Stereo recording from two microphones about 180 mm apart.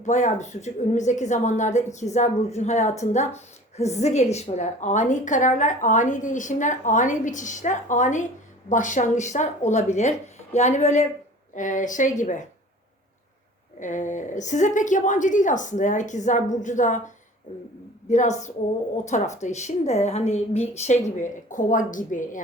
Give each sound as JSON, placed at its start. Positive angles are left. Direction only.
{"t": 0.0, "sound": "a woman's voice", "side_deg": 40}
{"t": 13.7, "sound": "a woman's voice", "side_deg": 45}
{"t": 18.1, "sound": "a woman's voice", "side_deg": 40}